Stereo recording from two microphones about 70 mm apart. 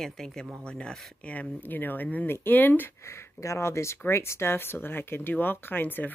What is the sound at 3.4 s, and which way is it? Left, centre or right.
Speech, left.